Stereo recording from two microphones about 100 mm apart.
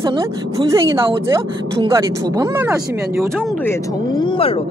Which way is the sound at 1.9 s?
35° right (ahead or behind).